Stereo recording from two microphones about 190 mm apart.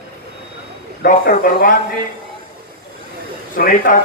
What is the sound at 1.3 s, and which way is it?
Speech, 50° left (ahead or behind).